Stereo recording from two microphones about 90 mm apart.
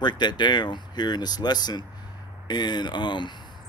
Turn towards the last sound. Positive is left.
turn(degrees=60)  # may be behind; listen again after turning